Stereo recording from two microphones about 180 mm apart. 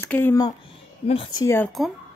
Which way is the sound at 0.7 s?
30° left (ahead or behind).